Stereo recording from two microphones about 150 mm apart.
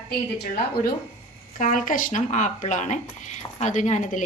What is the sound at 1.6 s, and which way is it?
A woman's voice, 60° left (ahead or behind).